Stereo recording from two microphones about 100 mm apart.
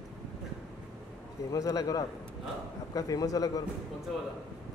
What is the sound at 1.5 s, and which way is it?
A man's voice, 35° left (ahead or behind).